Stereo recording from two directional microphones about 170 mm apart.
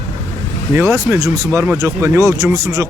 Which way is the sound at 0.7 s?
15° right (ahead or behind).